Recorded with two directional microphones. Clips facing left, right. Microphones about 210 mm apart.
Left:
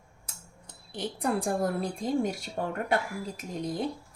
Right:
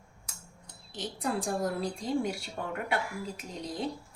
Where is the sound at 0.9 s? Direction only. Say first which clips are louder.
Left 3 dB; 60° left (ahead or behind).